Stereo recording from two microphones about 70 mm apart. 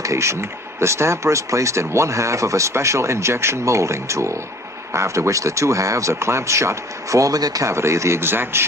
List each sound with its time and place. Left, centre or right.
0.0 s speech: right
7.7 s speech: right